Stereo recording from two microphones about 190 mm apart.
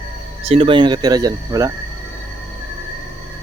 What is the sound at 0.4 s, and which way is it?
Speech, 30° right (ahead or behind).